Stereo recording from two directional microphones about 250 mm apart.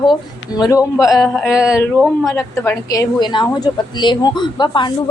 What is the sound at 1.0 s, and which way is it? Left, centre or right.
A woman's voice, centre.